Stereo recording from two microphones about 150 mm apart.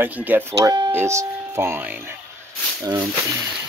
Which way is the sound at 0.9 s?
15° right (ahead or behind).